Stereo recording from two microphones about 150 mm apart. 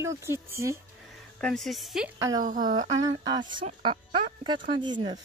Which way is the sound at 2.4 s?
65° right (ahead or behind).